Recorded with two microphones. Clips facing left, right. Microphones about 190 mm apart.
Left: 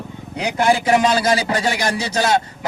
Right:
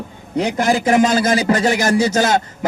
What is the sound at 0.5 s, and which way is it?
Speech, 45° right (ahead or behind).